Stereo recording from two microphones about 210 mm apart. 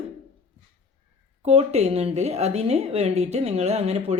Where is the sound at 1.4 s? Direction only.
30° right (ahead or behind).